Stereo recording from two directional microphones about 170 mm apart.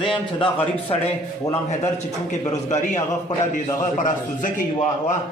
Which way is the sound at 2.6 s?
45° left (ahead or behind).